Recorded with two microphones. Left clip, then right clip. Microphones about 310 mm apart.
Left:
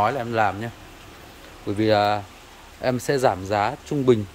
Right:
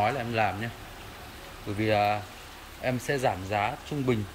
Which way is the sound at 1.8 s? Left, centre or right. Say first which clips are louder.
Left 6 dB; centre.